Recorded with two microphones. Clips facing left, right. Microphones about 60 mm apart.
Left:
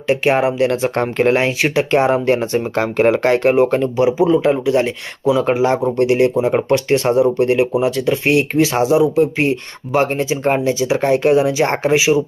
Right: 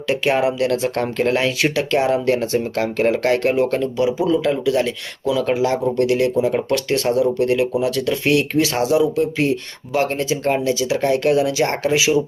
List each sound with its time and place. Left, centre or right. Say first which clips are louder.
0.1 s speech: left 3 dB; left
9.4 s speech: left 2 dB; left
10.2 s speech: left 3 dB; left